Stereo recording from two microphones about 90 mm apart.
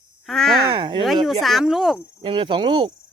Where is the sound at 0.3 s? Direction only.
5° left (ahead or behind).